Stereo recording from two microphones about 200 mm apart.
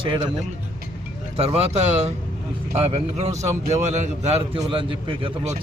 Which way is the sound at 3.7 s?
35° right (ahead or behind).